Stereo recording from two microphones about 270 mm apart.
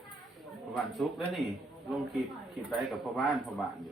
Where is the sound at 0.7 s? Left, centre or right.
Centre.